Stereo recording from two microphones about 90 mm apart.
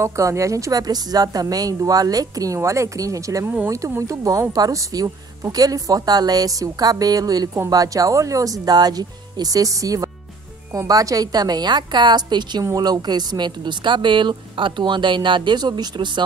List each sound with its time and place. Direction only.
0.0 s a woman's voice: 35° right (ahead or behind); by 16.3 s 60° right (ahead or behind)